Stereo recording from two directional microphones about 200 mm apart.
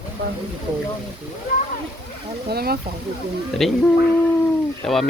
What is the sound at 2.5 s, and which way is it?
Speech, 50° right (ahead or behind).